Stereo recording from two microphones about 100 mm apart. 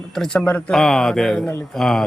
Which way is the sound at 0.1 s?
5° left (ahead or behind).